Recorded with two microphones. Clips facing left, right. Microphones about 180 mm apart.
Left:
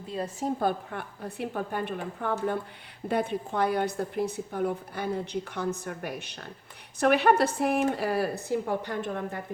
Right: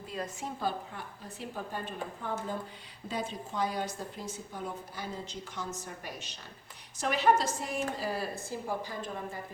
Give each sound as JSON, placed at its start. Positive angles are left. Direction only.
{"t": 0.1, "sound": "a woman's voice", "side_deg": 35}
{"t": 0.6, "sound": "a woman's voice", "side_deg": 60}